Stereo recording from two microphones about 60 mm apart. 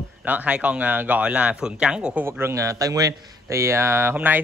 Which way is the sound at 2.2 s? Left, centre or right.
Right.